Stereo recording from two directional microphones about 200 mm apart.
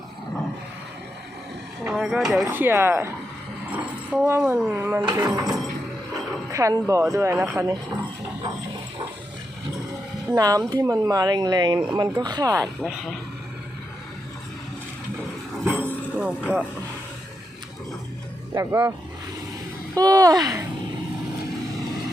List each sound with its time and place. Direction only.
1.8 s speech: 5° right (ahead or behind)
10.3 s speech: 20° right (ahead or behind)
12.6 s speech: centre (ahead or behind)
15.8 s a sound: 5° right (ahead or behind)
18.5 s speech: 15° right (ahead or behind)